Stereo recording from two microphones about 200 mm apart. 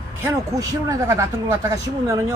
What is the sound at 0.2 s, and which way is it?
Speech, 15° right (ahead or behind).